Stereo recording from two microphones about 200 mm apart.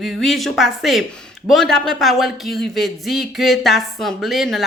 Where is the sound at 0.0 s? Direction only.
Centre (ahead or behind).